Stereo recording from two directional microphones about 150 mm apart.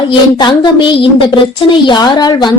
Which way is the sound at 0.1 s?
30° left (ahead or behind).